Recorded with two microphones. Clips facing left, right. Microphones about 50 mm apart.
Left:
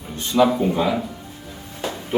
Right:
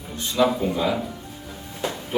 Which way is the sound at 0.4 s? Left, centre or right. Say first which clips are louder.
Left 4 dB; centre.